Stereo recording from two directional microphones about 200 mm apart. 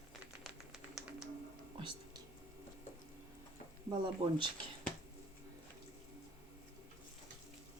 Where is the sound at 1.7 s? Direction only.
25° right (ahead or behind).